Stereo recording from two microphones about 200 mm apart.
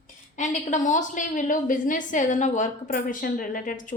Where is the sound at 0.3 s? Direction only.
40° left (ahead or behind).